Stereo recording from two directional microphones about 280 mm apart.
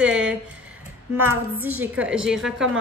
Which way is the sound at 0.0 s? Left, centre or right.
Centre.